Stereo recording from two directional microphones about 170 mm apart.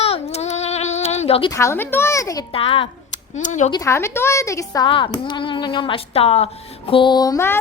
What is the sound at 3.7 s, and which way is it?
A woman's voice, 20° left (ahead or behind).